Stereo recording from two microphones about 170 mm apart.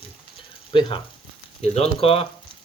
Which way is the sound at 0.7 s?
30° left (ahead or behind).